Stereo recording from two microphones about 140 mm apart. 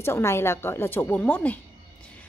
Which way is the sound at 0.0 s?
20° left (ahead or behind).